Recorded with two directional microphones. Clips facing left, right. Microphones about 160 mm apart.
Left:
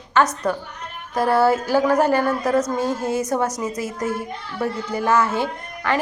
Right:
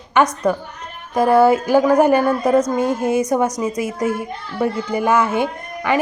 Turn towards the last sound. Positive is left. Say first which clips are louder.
# right 4 dB
turn(degrees=-15)  # may be behind; listen again after turning